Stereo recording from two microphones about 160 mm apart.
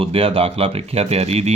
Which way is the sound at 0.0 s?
35° right (ahead or behind).